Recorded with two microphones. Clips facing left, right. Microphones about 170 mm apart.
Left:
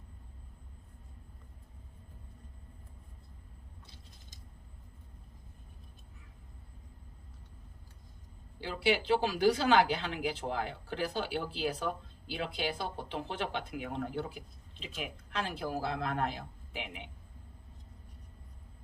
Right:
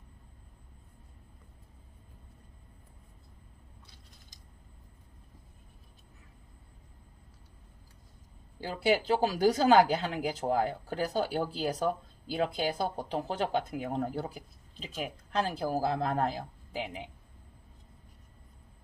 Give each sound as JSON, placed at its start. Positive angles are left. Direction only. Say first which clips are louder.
{"t": 8.6, "sound": "speech", "louder": "right 3 dB", "side_deg": -45}